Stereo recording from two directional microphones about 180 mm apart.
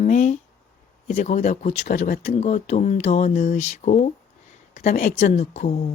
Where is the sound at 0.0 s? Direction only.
40° left (ahead or behind).